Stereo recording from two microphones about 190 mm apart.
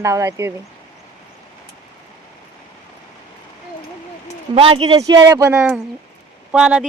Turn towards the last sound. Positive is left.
turn(degrees=-5)  # may be behind; listen again after turning